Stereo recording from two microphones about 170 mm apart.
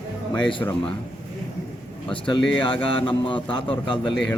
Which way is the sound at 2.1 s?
30° left (ahead or behind).